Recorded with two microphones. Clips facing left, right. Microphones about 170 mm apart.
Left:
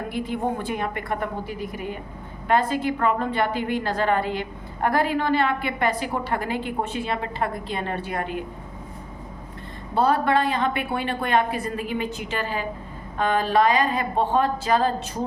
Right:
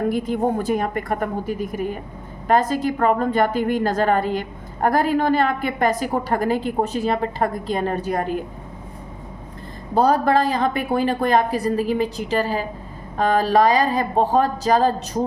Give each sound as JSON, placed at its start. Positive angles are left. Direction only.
{"t": 0.1, "sound": "a woman's voice", "side_deg": -45}
{"t": 9.9, "sound": "a woman's voice", "side_deg": -40}